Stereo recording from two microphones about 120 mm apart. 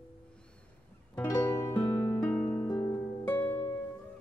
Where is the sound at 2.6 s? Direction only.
35° left (ahead or behind).